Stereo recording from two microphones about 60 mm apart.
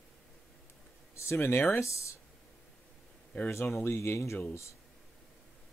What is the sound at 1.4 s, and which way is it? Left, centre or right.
Speech, left.